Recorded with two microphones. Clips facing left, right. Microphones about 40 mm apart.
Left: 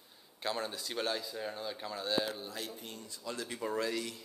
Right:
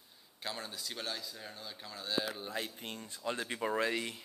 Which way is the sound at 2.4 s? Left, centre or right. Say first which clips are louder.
Right 2 dB; right.